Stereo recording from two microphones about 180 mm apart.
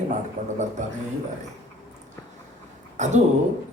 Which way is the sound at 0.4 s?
45° right (ahead or behind).